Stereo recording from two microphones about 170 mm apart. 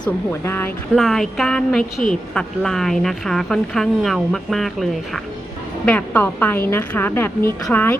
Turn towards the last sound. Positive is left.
turn(degrees=10)  # may be behind; listen again after turning